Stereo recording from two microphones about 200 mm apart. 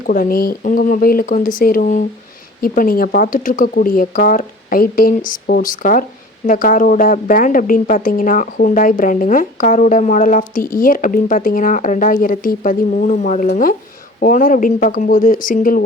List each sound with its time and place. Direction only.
0.1 s a woman's voice: 45° left (ahead or behind)